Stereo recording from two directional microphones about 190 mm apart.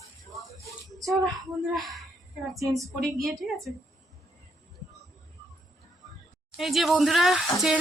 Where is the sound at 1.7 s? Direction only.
Centre (ahead or behind).